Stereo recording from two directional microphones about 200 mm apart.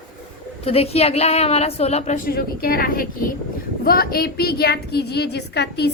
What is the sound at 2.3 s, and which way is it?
A woman's voice, 50° left (ahead or behind).